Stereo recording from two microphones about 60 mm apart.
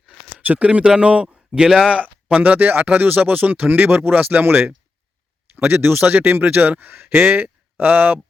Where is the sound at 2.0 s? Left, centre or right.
Right.